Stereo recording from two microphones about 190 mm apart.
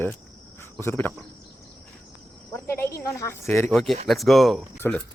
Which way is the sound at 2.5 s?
15° left (ahead or behind).